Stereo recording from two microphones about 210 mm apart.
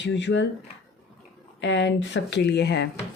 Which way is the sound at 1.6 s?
55° left (ahead or behind).